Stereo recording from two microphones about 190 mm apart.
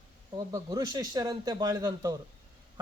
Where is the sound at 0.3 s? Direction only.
20° right (ahead or behind).